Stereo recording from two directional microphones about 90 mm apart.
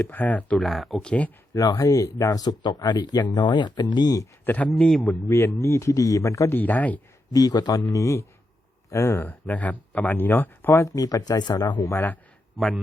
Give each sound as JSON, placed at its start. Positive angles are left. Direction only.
{"t": 0.0, "sound": "speech", "side_deg": 20}
{"t": 0.6, "sound": "speech", "side_deg": 0}
{"t": 1.5, "sound": "speech", "side_deg": 40}
{"t": 4.4, "sound": "speech", "side_deg": 15}
{"t": 5.3, "sound": "speech", "side_deg": 30}
{"t": 6.5, "sound": "speech", "side_deg": 20}
{"t": 7.3, "sound": "speech", "side_deg": 45}
{"t": 10.8, "sound": "speech", "side_deg": 40}
{"t": 11.8, "sound": "speech", "side_deg": 30}